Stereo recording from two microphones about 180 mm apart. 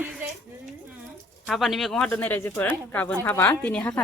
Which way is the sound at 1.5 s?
Centre (ahead or behind).